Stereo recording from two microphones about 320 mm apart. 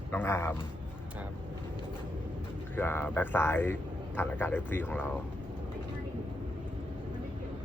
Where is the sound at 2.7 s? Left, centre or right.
Centre.